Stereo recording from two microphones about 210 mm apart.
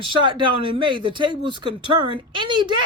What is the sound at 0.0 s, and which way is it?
Speech, 25° right (ahead or behind).